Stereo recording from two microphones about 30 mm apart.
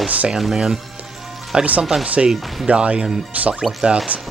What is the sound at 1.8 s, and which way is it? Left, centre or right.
Speech, centre.